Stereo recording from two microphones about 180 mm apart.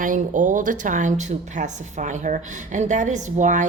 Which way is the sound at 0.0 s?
45° right (ahead or behind).